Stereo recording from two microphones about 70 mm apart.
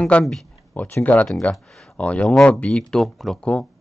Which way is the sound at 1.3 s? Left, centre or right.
Centre.